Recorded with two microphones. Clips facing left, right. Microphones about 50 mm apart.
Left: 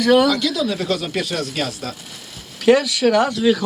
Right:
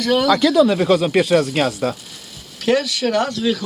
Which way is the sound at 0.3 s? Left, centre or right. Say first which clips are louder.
Right 6 dB; right.